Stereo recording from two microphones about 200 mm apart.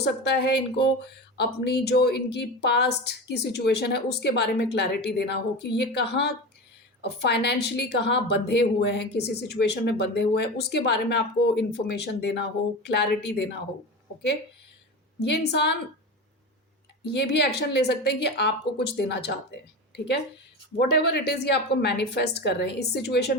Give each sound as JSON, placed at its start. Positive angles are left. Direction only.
{"t": 0.0, "sound": "a woman's voice", "side_deg": 55}
{"t": 15.2, "sound": "a woman's voice", "side_deg": 55}
{"t": 17.1, "sound": "a woman's voice", "side_deg": 55}
{"t": 20.7, "sound": "a woman's voice", "side_deg": 55}